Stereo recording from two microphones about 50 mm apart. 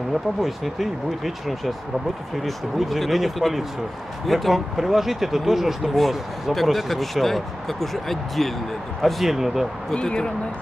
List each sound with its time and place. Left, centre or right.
0.4 s speech: centre
9.9 s speech: centre